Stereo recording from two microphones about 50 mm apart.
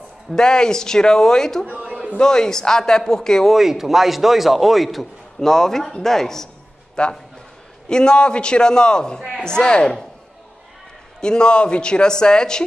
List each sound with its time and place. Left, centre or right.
0.4 s speech: centre
3.5 s a man's voice: centre
11.1 s speech: centre